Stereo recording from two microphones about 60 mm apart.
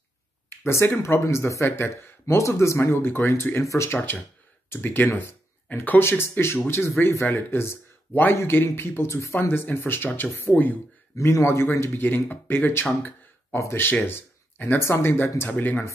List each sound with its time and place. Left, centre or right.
0.5 s speech: left
3.6 s speech: left
4.6 s speech: left
11.1 s speech: left
11.4 s speech: left
11.9 s speech: left